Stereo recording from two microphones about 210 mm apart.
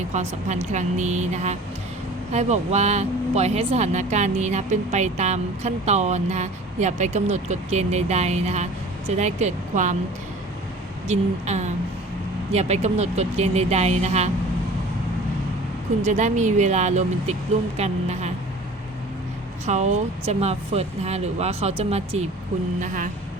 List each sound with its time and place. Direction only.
0.1 s speech: 35° right (ahead or behind)
11.1 s speech: 35° right (ahead or behind)
16.0 s speech: 35° right (ahead or behind)
19.6 s speech: 35° right (ahead or behind)